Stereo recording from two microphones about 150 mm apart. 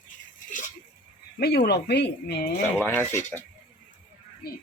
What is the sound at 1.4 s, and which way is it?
Speech, 90° left.